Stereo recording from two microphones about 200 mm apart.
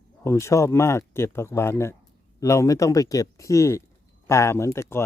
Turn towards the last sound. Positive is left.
turn(degrees=15)  # may be behind; listen again after turning